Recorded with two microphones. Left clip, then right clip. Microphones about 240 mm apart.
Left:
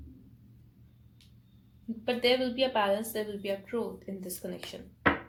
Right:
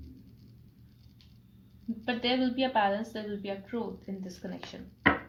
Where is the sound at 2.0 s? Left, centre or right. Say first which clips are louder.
Left 3 dB; left.